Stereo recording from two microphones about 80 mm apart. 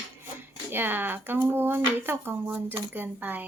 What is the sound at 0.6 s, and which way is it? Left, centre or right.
Speech, right.